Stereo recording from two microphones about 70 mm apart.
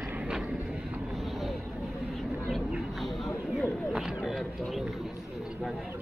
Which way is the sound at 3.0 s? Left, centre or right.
Centre.